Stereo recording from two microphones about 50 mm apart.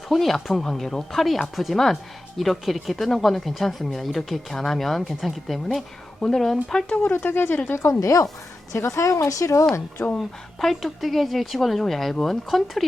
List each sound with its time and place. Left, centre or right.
0.1 s speech: centre
7.3 s speech: left
7.8 s speech: left
8.7 s speech: left
10.2 s speech: centre